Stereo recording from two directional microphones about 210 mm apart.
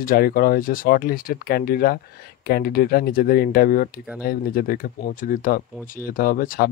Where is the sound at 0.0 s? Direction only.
45° left (ahead or behind).